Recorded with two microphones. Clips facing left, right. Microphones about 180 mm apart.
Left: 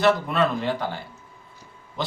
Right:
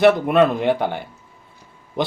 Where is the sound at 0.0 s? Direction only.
60° right (ahead or behind).